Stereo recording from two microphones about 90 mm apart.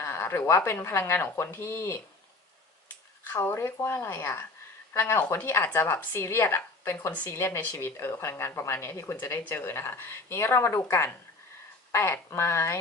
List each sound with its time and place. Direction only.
0.0 s a sound: 25° left (ahead or behind)
0.4 s a woman's voice: 30° left (ahead or behind)
3.3 s a woman's voice: 25° left (ahead or behind)